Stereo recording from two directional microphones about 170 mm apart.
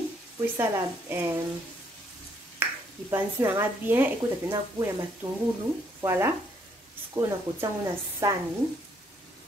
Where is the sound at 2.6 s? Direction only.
10° right (ahead or behind).